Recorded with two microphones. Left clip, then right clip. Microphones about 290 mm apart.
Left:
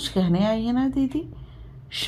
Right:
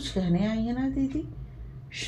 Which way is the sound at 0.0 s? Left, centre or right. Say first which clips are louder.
Left 6 dB; left.